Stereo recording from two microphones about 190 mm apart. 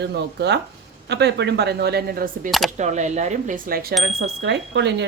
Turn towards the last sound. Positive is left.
turn(degrees=-65)  # may be behind; listen again after turning